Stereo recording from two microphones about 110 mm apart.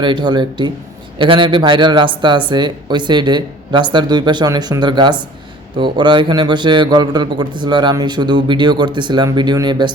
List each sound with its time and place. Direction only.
0.0 s a man's voice: 45° right (ahead or behind)